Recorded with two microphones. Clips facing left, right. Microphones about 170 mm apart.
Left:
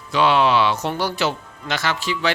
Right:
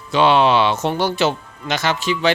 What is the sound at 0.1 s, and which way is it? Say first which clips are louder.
Speech: right 3 dB; 25° right (ahead or behind).